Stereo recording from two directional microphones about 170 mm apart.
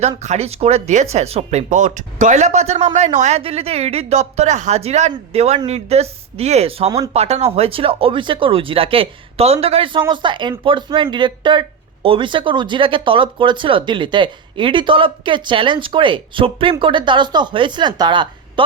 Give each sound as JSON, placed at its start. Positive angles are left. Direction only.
{"t": 0.2, "sound": "speech", "side_deg": -40}